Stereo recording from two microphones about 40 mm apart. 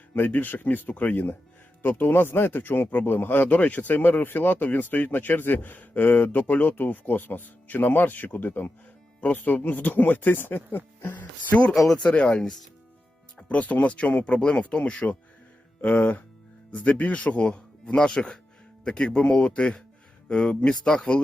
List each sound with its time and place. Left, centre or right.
0.3 s speech: left
1.8 s speech: left
3.4 s speech: left
6.3 s speech: left
12.0 s speech: left
13.5 s speech: left
15.8 s speech: left